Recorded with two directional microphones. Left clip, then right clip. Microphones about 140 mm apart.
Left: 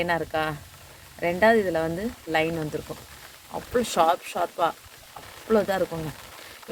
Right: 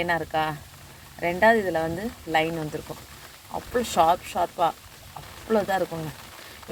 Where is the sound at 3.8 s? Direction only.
30° left (ahead or behind).